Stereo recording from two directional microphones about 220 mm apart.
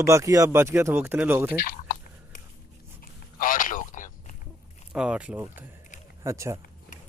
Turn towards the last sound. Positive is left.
turn(degrees=-15)  # may be behind; listen again after turning